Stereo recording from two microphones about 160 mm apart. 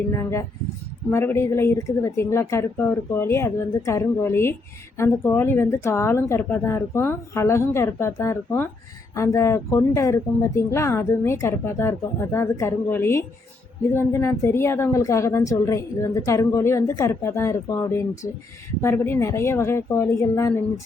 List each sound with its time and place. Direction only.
0.1 s a woman's voice: 20° left (ahead or behind)